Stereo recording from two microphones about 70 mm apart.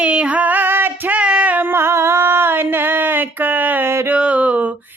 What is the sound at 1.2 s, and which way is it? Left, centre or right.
Mantra, centre.